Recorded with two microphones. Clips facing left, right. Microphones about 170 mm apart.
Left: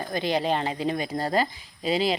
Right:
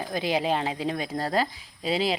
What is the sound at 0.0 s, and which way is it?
Speech, 5° right (ahead or behind).